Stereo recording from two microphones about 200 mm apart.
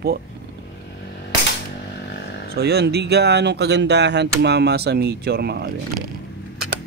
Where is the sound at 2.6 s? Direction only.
55° right (ahead or behind).